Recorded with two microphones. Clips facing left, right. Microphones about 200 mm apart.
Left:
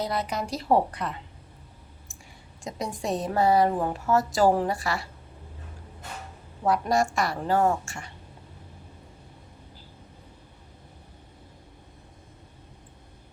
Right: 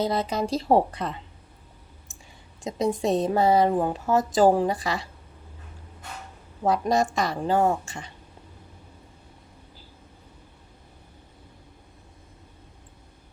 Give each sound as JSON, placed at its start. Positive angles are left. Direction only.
{"t": 0.0, "sound": "a woman's voice", "side_deg": -25}
{"t": 2.6, "sound": "a woman's voice", "side_deg": -20}
{"t": 6.7, "sound": "a woman's voice", "side_deg": -20}